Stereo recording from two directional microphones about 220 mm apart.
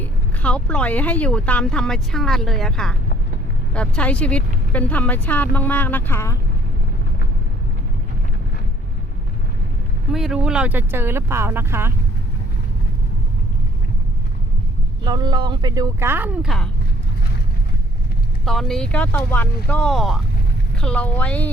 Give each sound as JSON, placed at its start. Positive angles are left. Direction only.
{"t": 0.0, "sound": "speech", "side_deg": 5}
{"t": 10.1, "sound": "speech", "side_deg": 0}
{"t": 15.0, "sound": "speech", "side_deg": -20}
{"t": 18.4, "sound": "speech", "side_deg": 0}